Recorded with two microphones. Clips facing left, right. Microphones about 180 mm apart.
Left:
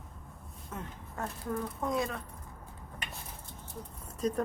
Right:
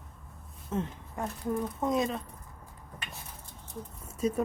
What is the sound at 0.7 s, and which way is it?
Speech, 20° right (ahead or behind).